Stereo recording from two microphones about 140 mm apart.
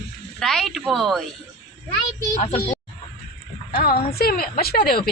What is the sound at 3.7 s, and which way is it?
Speech, 90° left.